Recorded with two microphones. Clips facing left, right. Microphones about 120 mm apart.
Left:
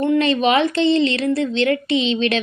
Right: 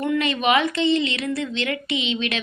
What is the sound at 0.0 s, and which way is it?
Speech, 30° left (ahead or behind).